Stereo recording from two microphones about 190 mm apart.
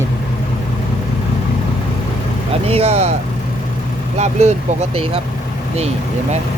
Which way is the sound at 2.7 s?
30° right (ahead or behind).